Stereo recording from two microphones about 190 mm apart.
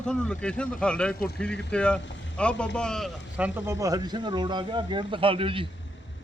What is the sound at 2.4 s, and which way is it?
Speech, 5° left (ahead or behind).